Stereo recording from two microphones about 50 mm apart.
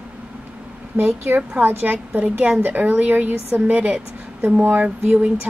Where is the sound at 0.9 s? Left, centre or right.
Right.